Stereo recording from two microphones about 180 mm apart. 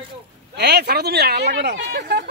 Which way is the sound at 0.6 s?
65° right (ahead or behind).